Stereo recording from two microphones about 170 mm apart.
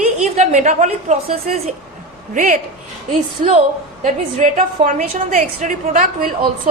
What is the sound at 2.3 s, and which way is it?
Speech, 50° right (ahead or behind).